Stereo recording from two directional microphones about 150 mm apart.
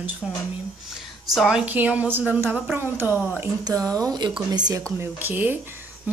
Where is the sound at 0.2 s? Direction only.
Centre (ahead or behind).